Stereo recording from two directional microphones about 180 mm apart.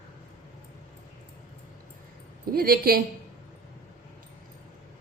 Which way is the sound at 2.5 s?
55° right (ahead or behind).